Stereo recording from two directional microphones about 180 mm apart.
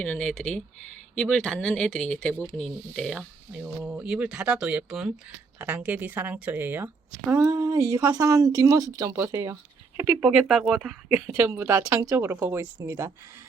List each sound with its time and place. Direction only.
0.0 s speech: 5° left (ahead or behind); by 13.1 s 15° right (ahead or behind)